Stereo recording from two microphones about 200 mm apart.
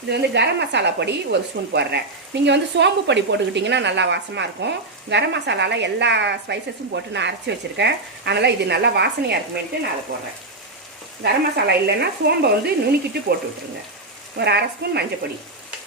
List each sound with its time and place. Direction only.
0.1 s a woman's voice: 55° right (ahead or behind)
11.2 s a woman's voice: 55° right (ahead or behind)
14.3 s a woman's voice: 55° right (ahead or behind)